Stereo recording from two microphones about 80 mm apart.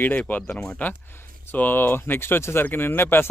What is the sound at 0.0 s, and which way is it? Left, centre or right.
Speech, left.